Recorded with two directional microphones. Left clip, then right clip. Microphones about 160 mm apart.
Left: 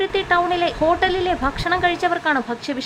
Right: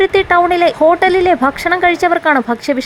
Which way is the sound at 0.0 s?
40° right (ahead or behind).